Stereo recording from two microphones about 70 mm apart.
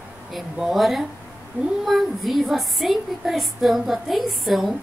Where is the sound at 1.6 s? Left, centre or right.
Right.